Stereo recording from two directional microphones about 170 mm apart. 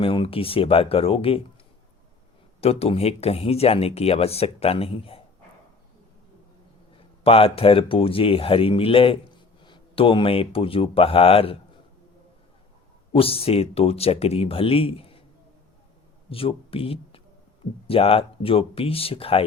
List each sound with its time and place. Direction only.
0.0 s speech: 30° left (ahead or behind)
2.6 s speech: 35° left (ahead or behind)
7.3 s speech: 35° left (ahead or behind)
13.1 s speech: 35° left (ahead or behind)
16.3 s speech: 35° left (ahead or behind)